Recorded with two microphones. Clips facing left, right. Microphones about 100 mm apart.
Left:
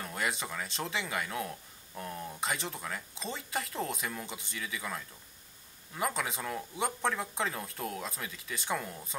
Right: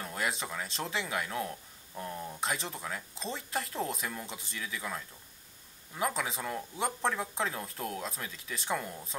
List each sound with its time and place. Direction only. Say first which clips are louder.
0.0 s speech: even; centre (ahead or behind)